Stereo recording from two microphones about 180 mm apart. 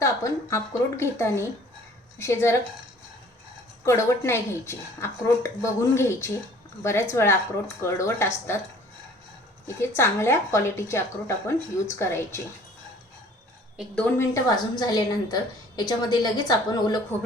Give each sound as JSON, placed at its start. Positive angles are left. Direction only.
{"t": 0.0, "sound": "a woman's voice", "side_deg": 15}
{"t": 3.8, "sound": "a woman's voice", "side_deg": 15}
{"t": 9.8, "sound": "a woman's voice", "side_deg": 15}
{"t": 13.7, "sound": "a woman's voice", "side_deg": 5}